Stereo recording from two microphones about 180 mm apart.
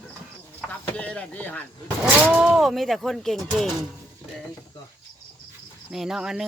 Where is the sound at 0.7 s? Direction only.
10° left (ahead or behind).